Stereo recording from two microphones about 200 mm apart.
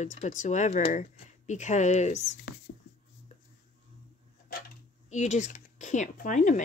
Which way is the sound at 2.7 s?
55° left (ahead or behind).